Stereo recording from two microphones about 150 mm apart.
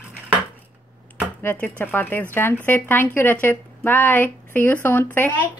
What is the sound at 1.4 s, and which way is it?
Speech, 10° left (ahead or behind).